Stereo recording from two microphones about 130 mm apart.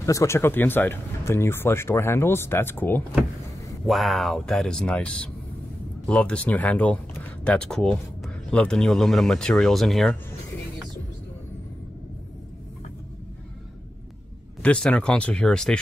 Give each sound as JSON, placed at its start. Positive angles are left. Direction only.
{"t": 0.0, "sound": "speech", "side_deg": 25}
{"t": 3.8, "sound": "speech", "side_deg": 0}
{"t": 14.6, "sound": "speech", "side_deg": 10}